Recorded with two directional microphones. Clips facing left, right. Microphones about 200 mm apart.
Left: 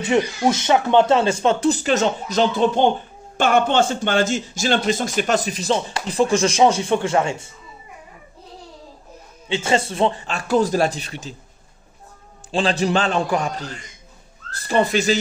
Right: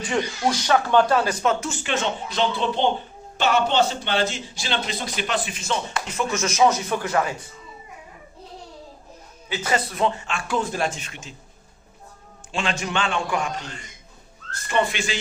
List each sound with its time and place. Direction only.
0.0 s speech: 25° left (ahead or behind)
9.5 s speech: 25° left (ahead or behind)
12.4 s speech: 35° left (ahead or behind)